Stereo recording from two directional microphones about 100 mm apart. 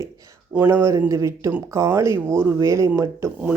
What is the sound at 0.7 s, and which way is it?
Speech, 30° right (ahead or behind).